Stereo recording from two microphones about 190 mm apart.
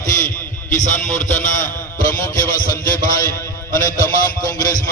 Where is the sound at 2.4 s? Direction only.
45° left (ahead or behind).